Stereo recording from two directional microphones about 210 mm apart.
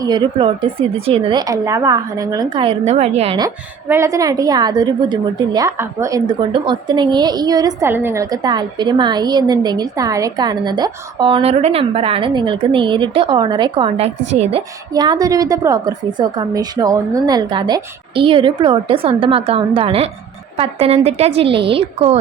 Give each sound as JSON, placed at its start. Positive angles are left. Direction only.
{"t": 0.0, "sound": "a woman's voice", "side_deg": -20}
{"t": 3.8, "sound": "a woman's voice", "side_deg": -15}
{"t": 14.9, "sound": "a woman's voice", "side_deg": -20}